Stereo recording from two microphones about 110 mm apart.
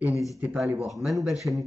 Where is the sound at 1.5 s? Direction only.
25° right (ahead or behind).